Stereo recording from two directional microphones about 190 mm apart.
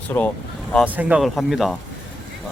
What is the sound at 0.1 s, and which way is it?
Speech, 10° left (ahead or behind).